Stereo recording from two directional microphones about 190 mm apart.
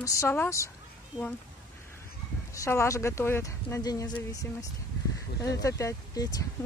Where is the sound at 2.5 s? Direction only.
15° left (ahead or behind).